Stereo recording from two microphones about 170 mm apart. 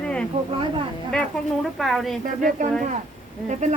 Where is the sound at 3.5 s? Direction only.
45° right (ahead or behind).